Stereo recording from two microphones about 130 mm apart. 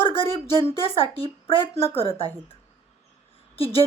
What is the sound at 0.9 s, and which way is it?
Speech, 45° left (ahead or behind).